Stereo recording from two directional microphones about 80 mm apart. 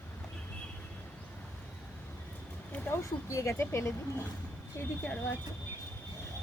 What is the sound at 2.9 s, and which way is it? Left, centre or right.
A woman's voice, left.